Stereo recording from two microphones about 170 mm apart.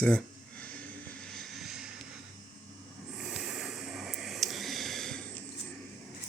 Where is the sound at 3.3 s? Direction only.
5° right (ahead or behind).